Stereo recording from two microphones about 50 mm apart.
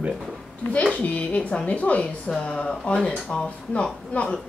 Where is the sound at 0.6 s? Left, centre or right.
Left.